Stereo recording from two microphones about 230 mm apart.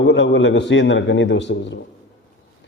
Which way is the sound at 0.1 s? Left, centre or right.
Left.